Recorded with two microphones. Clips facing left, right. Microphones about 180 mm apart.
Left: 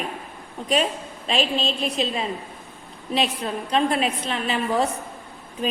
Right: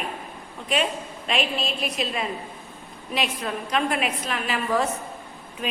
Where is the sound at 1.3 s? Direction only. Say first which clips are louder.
Left 3 dB; 30° left (ahead or behind).